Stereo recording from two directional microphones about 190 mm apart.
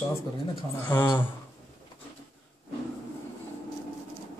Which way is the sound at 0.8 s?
10° left (ahead or behind).